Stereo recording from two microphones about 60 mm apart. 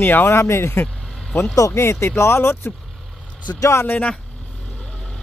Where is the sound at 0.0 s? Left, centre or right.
Left.